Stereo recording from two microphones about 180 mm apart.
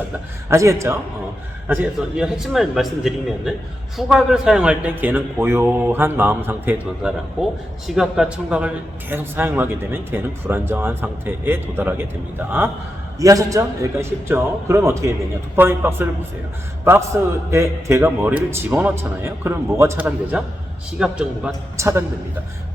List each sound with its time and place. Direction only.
0.5 s a man's voice: 15° right (ahead or behind)
17.1 s a man's voice: 15° right (ahead or behind)